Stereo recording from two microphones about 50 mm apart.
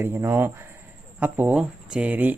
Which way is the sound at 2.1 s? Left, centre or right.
Right.